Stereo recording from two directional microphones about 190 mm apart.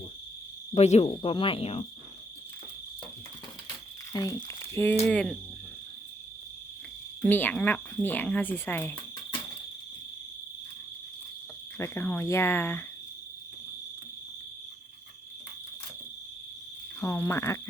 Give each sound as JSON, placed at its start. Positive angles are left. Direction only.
{"t": 0.7, "sound": "cricket", "side_deg": 35}
{"t": 1.1, "sound": "speech", "side_deg": 30}
{"t": 4.1, "sound": "speech", "side_deg": 20}
{"t": 5.0, "sound": "cricket", "side_deg": 5}
{"t": 7.2, "sound": "speech", "side_deg": 10}
{"t": 11.8, "sound": "speech", "side_deg": 10}
{"t": 17.0, "sound": "speech", "side_deg": 15}